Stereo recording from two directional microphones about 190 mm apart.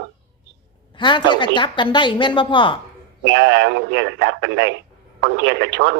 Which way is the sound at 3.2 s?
70° right (ahead or behind).